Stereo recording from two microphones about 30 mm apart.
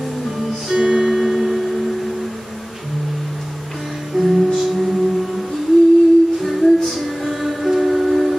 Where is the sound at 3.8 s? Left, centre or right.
Centre.